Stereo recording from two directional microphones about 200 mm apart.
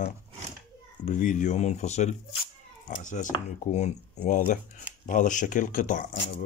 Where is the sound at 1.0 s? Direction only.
40° left (ahead or behind).